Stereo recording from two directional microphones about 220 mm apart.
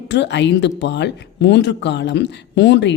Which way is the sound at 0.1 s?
50° left (ahead or behind).